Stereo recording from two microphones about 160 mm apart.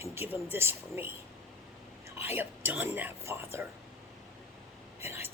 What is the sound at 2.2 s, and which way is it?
Speech, 15° right (ahead or behind).